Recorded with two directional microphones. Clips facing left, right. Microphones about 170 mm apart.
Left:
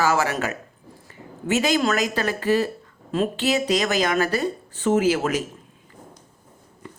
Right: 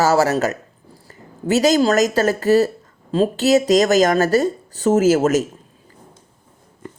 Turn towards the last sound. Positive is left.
turn(degrees=-45)  # may be behind; listen again after turning